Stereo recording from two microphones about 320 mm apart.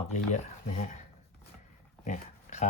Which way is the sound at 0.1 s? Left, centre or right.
Left.